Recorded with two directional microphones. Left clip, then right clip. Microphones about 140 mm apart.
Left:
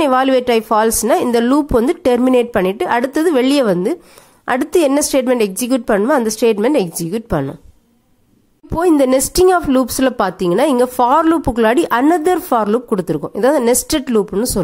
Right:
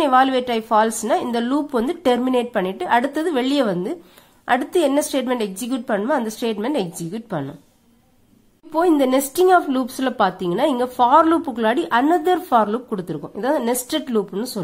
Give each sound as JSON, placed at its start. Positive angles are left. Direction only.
{"t": 0.0, "sound": "a woman's voice", "side_deg": 40}
{"t": 8.7, "sound": "a woman's voice", "side_deg": 40}